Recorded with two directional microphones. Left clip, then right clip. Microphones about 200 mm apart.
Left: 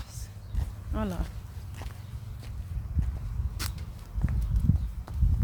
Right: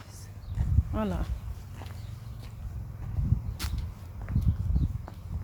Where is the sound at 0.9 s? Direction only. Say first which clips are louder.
Right 1 dB; 15° right (ahead or behind).